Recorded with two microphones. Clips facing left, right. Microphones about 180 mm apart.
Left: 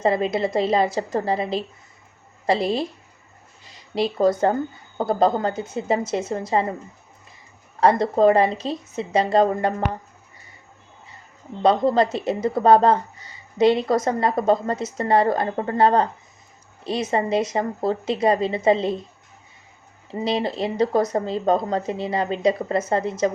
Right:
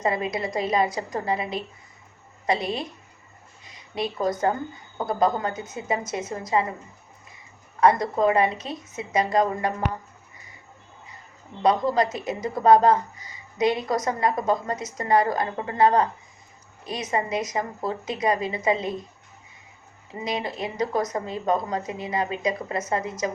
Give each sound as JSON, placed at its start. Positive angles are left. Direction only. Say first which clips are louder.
{"t": 0.0, "sound": "speech", "louder": "left 5 dB", "side_deg": 30}
{"t": 7.8, "sound": "speech", "louder": "left 3 dB", "side_deg": 30}
{"t": 11.6, "sound": "speech", "louder": "left 3 dB", "side_deg": 30}
{"t": 20.1, "sound": "speech", "louder": "left 6 dB", "side_deg": 30}